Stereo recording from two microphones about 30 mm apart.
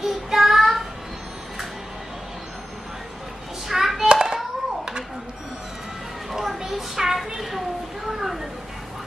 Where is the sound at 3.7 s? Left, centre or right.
Centre.